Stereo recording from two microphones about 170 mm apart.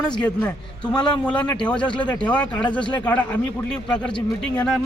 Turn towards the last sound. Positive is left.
turn(degrees=5)  # may be behind; listen again after turning